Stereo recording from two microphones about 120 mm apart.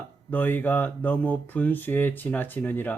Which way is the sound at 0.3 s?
15° left (ahead or behind).